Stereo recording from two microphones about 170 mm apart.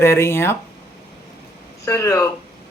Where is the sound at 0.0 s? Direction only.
15° left (ahead or behind).